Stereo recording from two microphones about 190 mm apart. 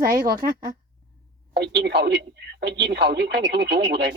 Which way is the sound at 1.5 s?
60° right (ahead or behind).